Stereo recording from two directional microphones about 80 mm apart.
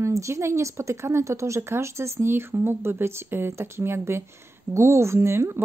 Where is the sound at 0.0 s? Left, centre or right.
Right.